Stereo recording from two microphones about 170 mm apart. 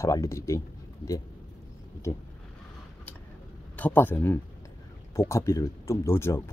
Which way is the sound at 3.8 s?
10° left (ahead or behind).